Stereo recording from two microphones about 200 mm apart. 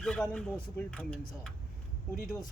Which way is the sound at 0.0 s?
5° left (ahead or behind).